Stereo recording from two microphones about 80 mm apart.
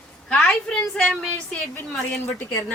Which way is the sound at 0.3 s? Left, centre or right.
Centre.